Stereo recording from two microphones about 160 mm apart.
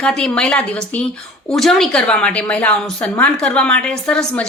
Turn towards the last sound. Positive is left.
turn(degrees=5)  # may be behind; listen again after turning